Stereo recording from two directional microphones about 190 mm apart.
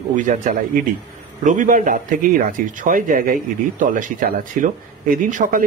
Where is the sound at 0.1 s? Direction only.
40° right (ahead or behind).